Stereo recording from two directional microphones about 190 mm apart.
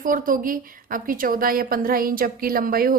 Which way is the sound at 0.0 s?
45° right (ahead or behind).